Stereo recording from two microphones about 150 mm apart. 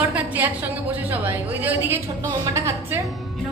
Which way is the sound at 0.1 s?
10° right (ahead or behind).